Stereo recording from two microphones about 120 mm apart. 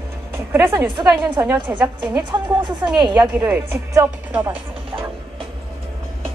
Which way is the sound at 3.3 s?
15° right (ahead or behind).